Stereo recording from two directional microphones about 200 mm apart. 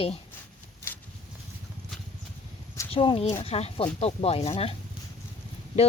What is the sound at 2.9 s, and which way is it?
Speech, 30° left (ahead or behind).